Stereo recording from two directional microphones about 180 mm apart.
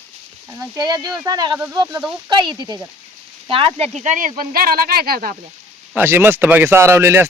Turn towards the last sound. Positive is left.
turn(degrees=-15)  # may be behind; listen again after turning